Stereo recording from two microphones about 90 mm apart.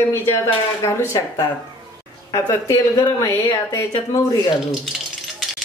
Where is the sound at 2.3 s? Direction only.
40° left (ahead or behind).